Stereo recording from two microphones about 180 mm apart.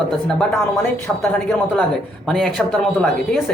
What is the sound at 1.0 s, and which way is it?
Speech, 5° left (ahead or behind).